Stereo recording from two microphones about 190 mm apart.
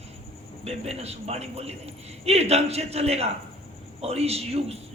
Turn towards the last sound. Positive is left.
turn(degrees=-35)  # may be behind; listen again after turning